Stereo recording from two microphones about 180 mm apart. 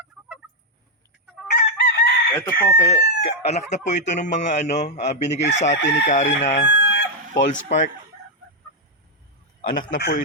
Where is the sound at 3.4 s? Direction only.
35° left (ahead or behind).